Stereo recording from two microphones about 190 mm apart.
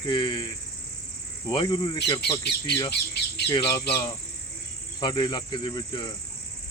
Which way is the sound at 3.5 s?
20° left (ahead or behind).